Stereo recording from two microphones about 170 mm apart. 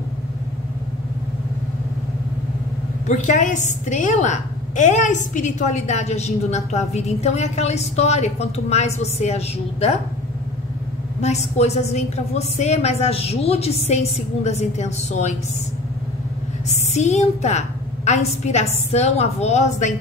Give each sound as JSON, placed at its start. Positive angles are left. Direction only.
{"t": 3.1, "sound": "a woman's voice", "side_deg": 45}
{"t": 11.1, "sound": "a woman's voice", "side_deg": 40}
{"t": 16.9, "sound": "a woman's voice", "side_deg": 40}